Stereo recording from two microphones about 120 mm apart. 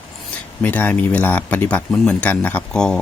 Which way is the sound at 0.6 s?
15° left (ahead or behind).